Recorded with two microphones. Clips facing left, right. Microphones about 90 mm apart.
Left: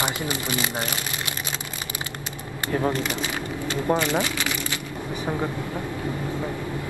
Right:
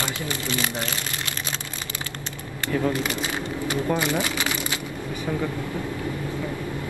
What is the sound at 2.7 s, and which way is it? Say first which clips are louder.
Speech: even; 35° left (ahead or behind).